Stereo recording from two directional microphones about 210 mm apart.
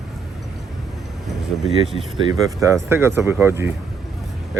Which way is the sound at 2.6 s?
15° right (ahead or behind).